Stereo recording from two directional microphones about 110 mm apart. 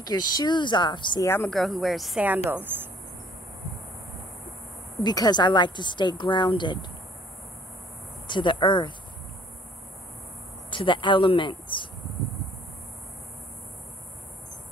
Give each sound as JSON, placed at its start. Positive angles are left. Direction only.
{"t": 0.0, "sound": "speech", "side_deg": 40}
{"t": 1.2, "sound": "speech", "side_deg": 20}
{"t": 1.5, "sound": "speech", "side_deg": 0}
{"t": 2.2, "sound": "speech", "side_deg": -15}
{"t": 5.0, "sound": "speech", "side_deg": 40}
{"t": 8.3, "sound": "speech", "side_deg": 45}
{"t": 10.7, "sound": "speech", "side_deg": 50}